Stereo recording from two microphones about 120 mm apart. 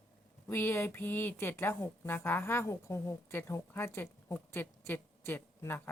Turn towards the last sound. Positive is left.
turn(degrees=20)  # may be behind; listen again after turning